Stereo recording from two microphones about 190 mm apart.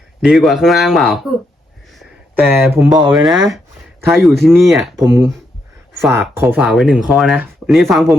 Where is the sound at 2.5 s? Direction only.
15° right (ahead or behind).